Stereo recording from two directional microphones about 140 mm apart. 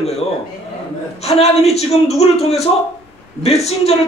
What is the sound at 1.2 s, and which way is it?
A man's voice, 50° left (ahead or behind).